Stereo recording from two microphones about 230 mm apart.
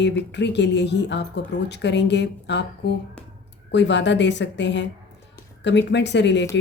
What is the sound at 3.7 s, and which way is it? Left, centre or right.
Speech, left.